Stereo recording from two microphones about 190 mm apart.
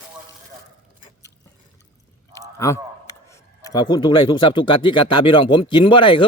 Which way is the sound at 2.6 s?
15° left (ahead or behind).